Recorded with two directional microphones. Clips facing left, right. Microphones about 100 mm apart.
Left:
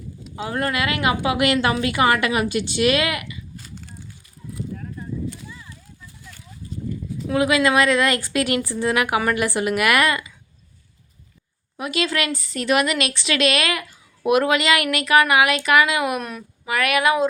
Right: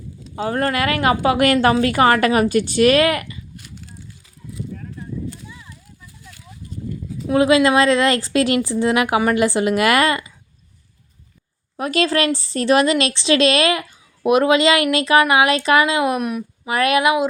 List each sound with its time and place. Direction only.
0.3 s speech: 40° right (ahead or behind)
7.3 s speech: 30° right (ahead or behind)
11.8 s speech: 40° right (ahead or behind); by 17.2 s 20° right (ahead or behind)